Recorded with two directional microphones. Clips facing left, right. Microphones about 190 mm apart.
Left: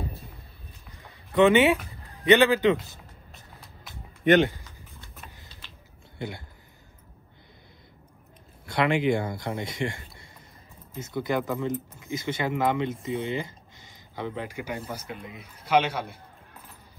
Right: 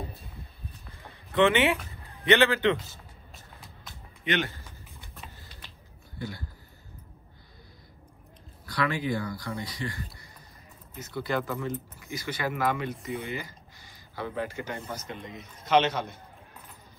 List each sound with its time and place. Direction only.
1.3 s a man's voice: 15° left (ahead or behind)
4.2 s speech: 50° left (ahead or behind)
6.1 s speech: 20° left (ahead or behind)
8.6 s speech: 25° left (ahead or behind)
13.3 s a sound: 25° left (ahead or behind)
14.9 s a man's voice: 10° left (ahead or behind)